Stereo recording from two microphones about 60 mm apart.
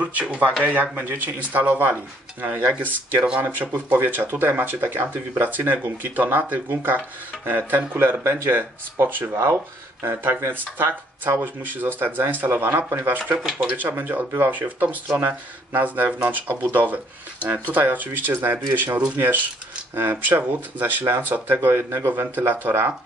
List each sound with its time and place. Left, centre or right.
0.0 s speech: right
10.8 s speech: right
13.6 s speech: right
20.0 s speech: right